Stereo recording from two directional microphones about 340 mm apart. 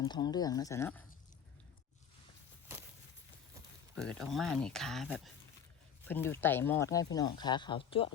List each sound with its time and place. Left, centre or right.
0.0 s speech: centre
3.9 s speech: centre